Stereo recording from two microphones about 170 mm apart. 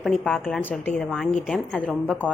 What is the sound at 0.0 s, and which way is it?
A woman's voice, 5° left (ahead or behind).